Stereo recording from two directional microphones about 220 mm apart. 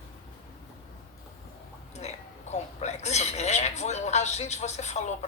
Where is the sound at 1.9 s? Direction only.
30° left (ahead or behind).